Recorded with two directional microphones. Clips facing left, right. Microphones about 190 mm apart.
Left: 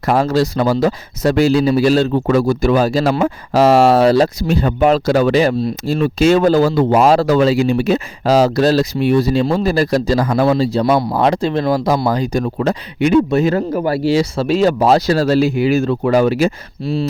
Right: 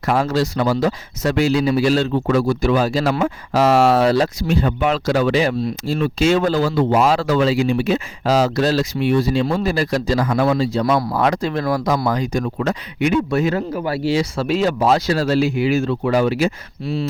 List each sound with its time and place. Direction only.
0.1 s speech: 35° left (ahead or behind)